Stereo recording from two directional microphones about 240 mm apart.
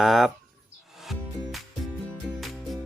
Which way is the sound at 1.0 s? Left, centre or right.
Centre.